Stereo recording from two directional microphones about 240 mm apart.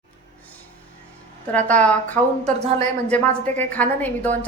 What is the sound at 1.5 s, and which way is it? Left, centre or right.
A woman's voice, centre.